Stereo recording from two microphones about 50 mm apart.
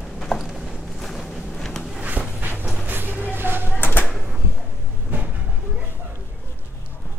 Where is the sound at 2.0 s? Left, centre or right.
Right.